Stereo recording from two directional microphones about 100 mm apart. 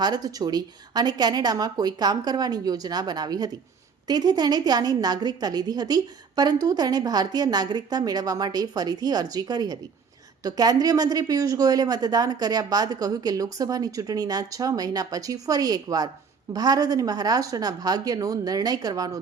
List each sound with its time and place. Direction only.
0.0 s a woman's voice: 40° right (ahead or behind)